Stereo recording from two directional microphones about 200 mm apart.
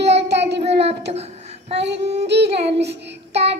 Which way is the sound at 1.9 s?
60° right (ahead or behind).